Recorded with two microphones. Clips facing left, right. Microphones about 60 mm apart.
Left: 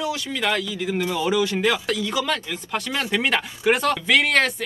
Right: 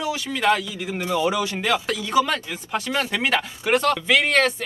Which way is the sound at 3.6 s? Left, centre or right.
Centre.